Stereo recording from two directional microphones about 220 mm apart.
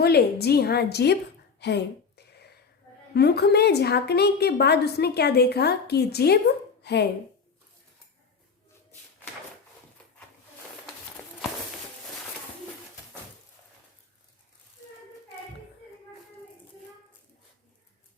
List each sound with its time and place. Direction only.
0.0 s a woman's voice: 45° left (ahead or behind)